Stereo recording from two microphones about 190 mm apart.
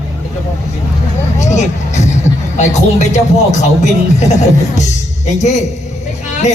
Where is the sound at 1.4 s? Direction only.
40° left (ahead or behind).